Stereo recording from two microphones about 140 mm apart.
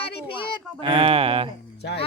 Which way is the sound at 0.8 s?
40° right (ahead or behind).